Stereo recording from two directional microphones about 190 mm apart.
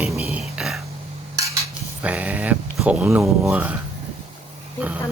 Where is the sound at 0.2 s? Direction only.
5° right (ahead or behind).